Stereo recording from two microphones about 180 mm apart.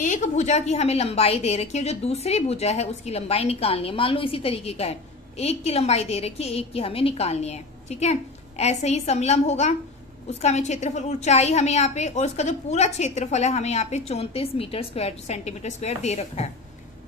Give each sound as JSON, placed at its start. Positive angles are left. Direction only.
{"t": 0.0, "sound": "a woman's voice", "side_deg": 45}